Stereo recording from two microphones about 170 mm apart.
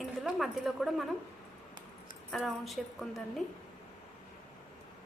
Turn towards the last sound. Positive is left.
turn(degrees=0)  # may be behind; listen again after turning